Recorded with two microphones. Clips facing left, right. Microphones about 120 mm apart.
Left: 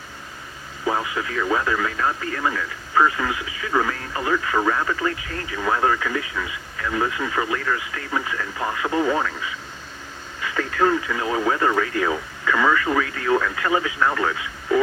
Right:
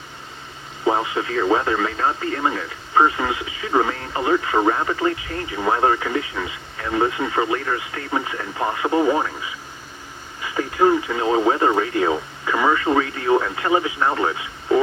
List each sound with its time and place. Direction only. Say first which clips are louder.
0.9 s speech: right 4 dB; 25° right (ahead or behind)